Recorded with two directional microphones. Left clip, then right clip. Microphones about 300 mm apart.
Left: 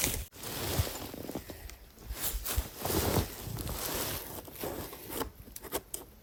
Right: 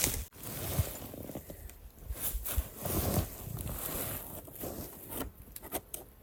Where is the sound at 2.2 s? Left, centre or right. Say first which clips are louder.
Left 5 dB; left.